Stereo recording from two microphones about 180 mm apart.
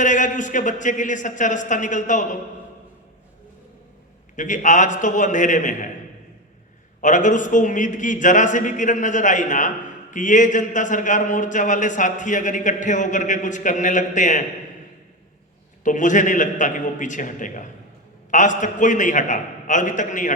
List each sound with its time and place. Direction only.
0.0 s a man's voice: 45° left (ahead or behind)
4.4 s a man's voice: 45° left (ahead or behind)
7.0 s a man's voice: 45° left (ahead or behind)
15.8 s a man's voice: 45° left (ahead or behind)